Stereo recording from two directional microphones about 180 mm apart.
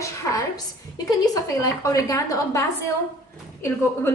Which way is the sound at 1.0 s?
20° left (ahead or behind).